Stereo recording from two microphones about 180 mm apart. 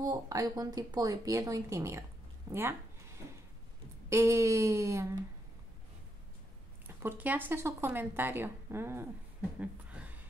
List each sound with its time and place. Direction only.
0.0 s speech: 20° right (ahead or behind)
4.1 s a woman's voice: 15° right (ahead or behind)
7.0 s a woman's voice: 10° right (ahead or behind)
9.6 s a sound: 5° right (ahead or behind)